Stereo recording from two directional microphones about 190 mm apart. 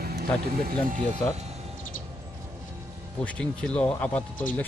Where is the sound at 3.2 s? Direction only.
5° left (ahead or behind).